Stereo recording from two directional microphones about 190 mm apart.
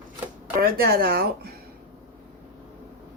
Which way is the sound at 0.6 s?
55° right (ahead or behind).